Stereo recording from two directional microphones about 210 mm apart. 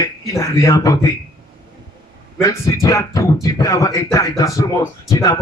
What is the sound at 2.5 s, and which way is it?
A man's voice, 15° left (ahead or behind).